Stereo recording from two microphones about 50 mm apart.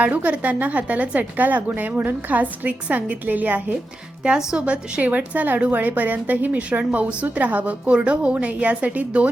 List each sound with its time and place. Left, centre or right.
0.0 s a woman's voice: right